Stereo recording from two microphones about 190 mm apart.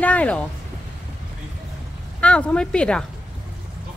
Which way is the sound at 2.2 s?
5° left (ahead or behind).